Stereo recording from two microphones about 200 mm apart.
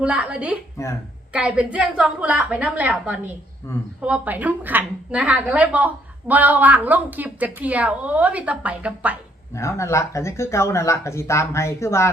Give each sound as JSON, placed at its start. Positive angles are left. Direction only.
{"t": 0.0, "sound": "a woman's voice", "side_deg": -5}
{"t": 9.6, "sound": "speech", "side_deg": 15}